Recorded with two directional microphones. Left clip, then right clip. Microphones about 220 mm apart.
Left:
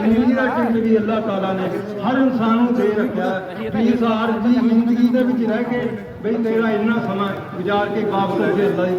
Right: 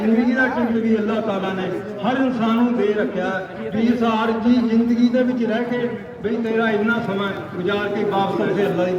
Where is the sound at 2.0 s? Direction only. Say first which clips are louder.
Left 2 dB; 45° right (ahead or behind).